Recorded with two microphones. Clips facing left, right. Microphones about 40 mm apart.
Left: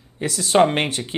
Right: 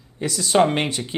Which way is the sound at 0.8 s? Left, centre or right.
Left.